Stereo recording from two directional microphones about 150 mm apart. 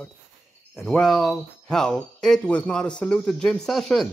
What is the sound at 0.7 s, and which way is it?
Speech, centre (ahead or behind).